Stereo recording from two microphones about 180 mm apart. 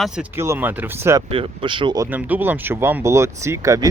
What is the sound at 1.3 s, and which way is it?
Speech, 30° right (ahead or behind).